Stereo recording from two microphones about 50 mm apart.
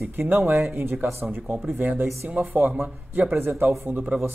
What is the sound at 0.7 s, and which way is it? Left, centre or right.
A man's voice, right.